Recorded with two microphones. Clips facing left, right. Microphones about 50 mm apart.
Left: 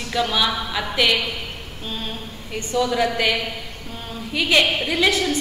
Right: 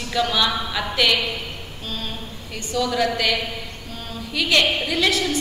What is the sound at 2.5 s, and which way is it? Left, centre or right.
A woman's voice, left.